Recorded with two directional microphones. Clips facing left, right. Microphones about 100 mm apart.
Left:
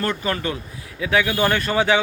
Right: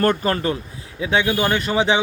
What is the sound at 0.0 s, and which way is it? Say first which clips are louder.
Speech: right 5 dB; 45° right (ahead or behind).